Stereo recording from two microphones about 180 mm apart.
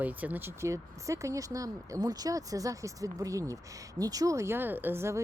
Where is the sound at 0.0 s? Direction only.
10° right (ahead or behind).